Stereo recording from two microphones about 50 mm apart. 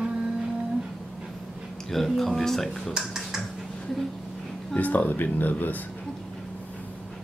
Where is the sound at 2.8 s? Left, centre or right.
Centre.